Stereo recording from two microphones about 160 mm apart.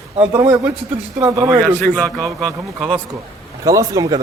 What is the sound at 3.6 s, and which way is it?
Speech, 20° right (ahead or behind).